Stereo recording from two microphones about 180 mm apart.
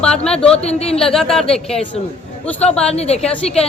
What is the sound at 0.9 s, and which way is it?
Speech, centre (ahead or behind).